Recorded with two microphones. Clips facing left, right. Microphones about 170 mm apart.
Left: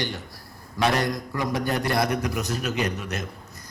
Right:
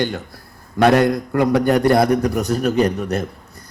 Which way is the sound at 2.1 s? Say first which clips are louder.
Right 9 dB; 40° right (ahead or behind).